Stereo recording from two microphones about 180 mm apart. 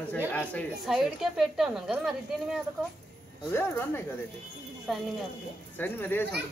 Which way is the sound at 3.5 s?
10° left (ahead or behind).